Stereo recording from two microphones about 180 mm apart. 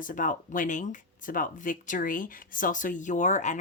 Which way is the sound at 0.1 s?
45° left (ahead or behind).